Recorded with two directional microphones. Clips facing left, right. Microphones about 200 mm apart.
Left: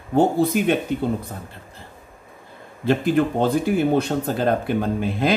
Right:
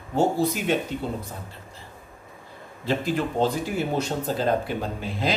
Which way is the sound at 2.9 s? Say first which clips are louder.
Left 6 dB; 55° left (ahead or behind).